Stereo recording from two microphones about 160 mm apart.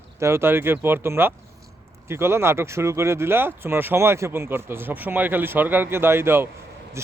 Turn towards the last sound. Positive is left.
turn(degrees=-15)  # may be behind; listen again after turning